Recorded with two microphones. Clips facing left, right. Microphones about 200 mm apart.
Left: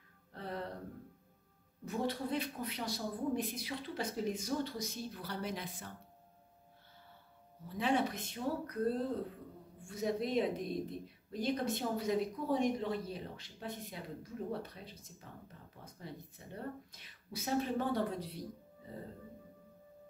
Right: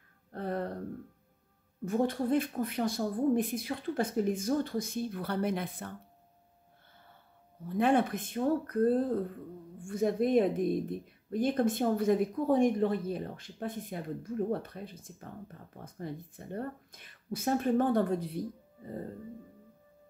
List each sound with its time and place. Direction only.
0.3 s music: 50° right (ahead or behind)
1.9 s speech: 50° right (ahead or behind)
7.6 s speech: 55° right (ahead or behind)
18.8 s music: 50° right (ahead or behind)